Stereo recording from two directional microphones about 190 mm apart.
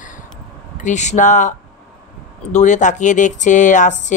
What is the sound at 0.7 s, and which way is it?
Speech, 40° left (ahead or behind).